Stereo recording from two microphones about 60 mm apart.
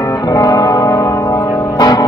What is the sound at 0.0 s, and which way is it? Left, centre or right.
Music, left.